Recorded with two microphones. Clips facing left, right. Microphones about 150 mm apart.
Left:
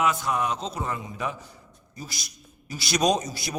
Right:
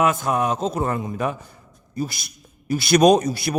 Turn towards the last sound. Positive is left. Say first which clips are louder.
# right 9 dB
turn(degrees=-60)  # may be behind; listen again after turning